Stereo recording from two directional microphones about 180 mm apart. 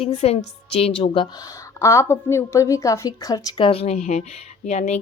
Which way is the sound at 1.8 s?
15° left (ahead or behind).